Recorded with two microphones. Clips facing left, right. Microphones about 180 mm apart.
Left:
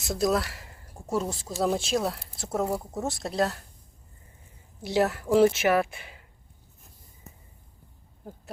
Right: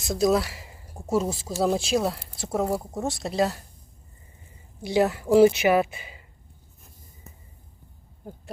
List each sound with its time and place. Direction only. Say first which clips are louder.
0.1 s speech: right 3 dB; centre (ahead or behind)
4.8 s speech: right 2 dB; centre (ahead or behind)